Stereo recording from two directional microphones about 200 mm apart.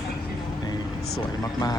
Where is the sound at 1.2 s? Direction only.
20° left (ahead or behind).